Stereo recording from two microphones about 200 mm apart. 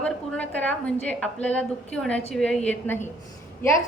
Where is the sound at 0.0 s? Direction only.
5° left (ahead or behind).